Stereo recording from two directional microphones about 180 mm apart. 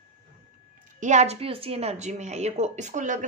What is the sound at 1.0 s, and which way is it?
Speech, 40° right (ahead or behind).